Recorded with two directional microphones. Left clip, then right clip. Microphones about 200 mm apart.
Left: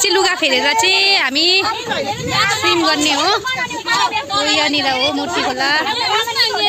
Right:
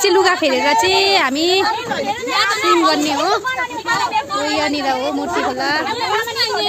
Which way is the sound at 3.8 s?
50° right (ahead or behind).